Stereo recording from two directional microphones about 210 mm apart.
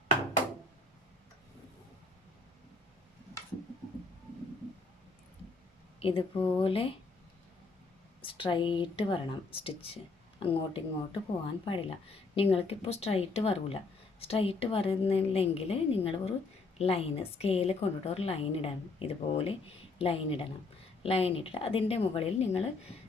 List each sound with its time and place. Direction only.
6.0 s a woman's voice: 25° left (ahead or behind)
8.2 s a woman's voice: 25° left (ahead or behind)